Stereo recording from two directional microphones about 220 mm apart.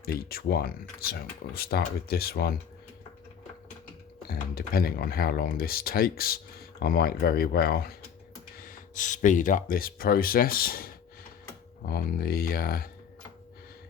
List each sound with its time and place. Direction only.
0.0 s speech: 45° left (ahead or behind)
4.3 s speech: 40° left (ahead or behind)